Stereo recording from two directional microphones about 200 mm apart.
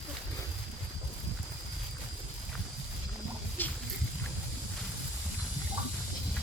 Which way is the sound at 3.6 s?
10° left (ahead or behind).